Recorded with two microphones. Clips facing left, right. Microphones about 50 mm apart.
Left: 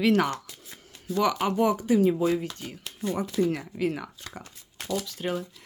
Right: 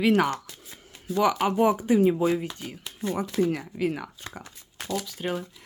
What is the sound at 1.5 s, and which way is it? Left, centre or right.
Speech, right.